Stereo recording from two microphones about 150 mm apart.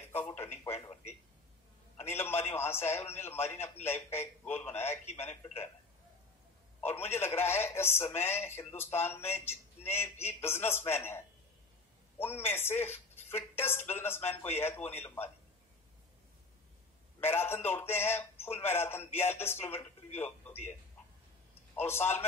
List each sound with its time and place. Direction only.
0.1 s a man's voice: 10° left (ahead or behind)
2.0 s a man's voice: 15° left (ahead or behind)
6.9 s a man's voice: 15° left (ahead or behind)
17.2 s a man's voice: 15° left (ahead or behind)
21.7 s a man's voice: 15° left (ahead or behind)